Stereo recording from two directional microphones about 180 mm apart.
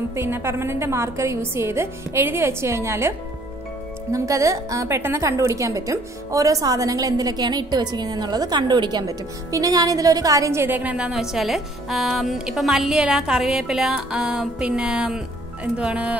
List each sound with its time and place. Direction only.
0.1 s a woman's voice: 15° right (ahead or behind)